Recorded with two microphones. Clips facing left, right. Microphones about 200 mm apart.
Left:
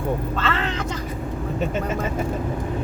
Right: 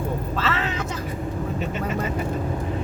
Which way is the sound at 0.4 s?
5° right (ahead or behind).